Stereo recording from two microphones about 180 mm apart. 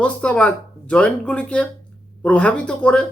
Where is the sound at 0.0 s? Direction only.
5° left (ahead or behind).